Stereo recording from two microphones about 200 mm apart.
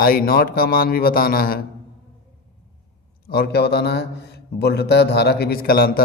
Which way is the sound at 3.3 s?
50° left (ahead or behind).